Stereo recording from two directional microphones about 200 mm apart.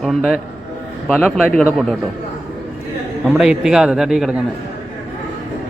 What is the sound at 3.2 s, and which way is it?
A man's voice, centre (ahead or behind).